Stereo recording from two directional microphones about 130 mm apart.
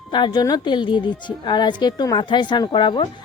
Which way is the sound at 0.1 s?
35° left (ahead or behind).